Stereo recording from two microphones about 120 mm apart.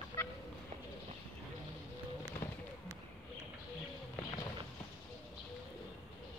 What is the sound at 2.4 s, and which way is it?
Fireworks, 20° left (ahead or behind).